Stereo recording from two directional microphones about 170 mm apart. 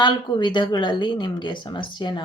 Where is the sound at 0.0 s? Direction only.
25° left (ahead or behind).